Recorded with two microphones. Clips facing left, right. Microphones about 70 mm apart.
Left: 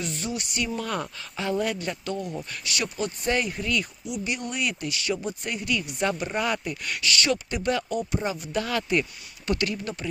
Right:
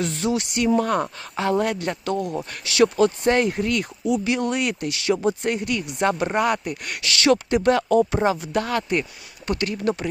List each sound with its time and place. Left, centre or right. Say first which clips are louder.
0.0 s speech: right 8 dB; right
0.6 s speech: right 9 dB; right
1.4 s speech: right 5 dB; right
2.3 s a woman's voice: right 6 dB; right
2.7 s speech: right 13 dB; right
3.2 s a woman's voice: right 7 dB; right
4.2 s speech: right 7 dB; right
5.5 s a woman's voice: right 5 dB; right
7.0 s speech: right 7 dB; right
8.5 s speech: right 3 dB; right